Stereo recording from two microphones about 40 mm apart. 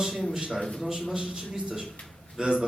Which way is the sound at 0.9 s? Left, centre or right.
Centre.